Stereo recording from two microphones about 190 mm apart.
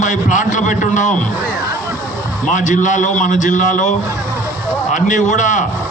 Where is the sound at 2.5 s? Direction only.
40° left (ahead or behind).